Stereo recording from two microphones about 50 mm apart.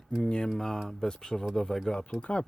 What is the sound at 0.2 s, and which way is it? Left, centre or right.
Speech, centre.